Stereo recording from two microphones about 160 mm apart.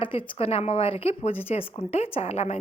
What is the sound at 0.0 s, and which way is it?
A woman's voice, 30° left (ahead or behind).